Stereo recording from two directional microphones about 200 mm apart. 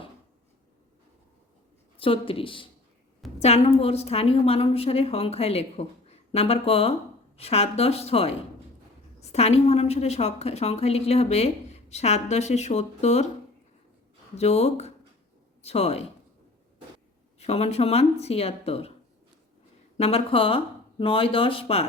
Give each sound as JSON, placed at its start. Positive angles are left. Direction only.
{"t": 2.0, "sound": "a woman's voice", "side_deg": 25}
{"t": 14.3, "sound": "a woman's voice", "side_deg": 30}
{"t": 17.4, "sound": "a woman's voice", "side_deg": 30}
{"t": 20.0, "sound": "speech", "side_deg": 30}